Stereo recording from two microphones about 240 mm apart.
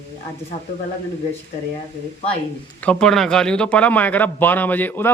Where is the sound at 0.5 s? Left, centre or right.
Left.